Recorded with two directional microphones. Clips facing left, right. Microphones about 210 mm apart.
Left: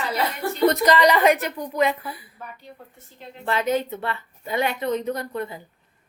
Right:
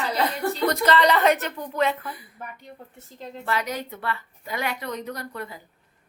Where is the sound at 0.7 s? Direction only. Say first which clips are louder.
Left 3 dB; 15° left (ahead or behind).